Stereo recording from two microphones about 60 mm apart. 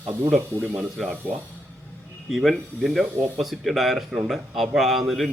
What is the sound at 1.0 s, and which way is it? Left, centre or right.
Speech, centre.